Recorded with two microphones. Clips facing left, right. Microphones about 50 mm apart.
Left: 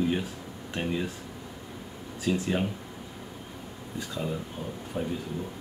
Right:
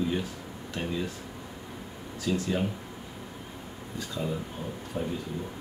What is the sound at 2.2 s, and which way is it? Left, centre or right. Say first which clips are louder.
Speech: left 1 dB; left.